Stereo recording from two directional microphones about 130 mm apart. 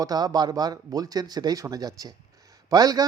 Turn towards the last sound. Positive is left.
turn(degrees=-30)  # may be behind; listen again after turning